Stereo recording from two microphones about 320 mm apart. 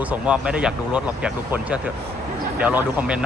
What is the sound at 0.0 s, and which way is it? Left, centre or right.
Speech, centre.